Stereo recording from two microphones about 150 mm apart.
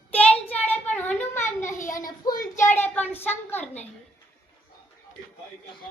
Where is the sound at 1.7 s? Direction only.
60° left (ahead or behind).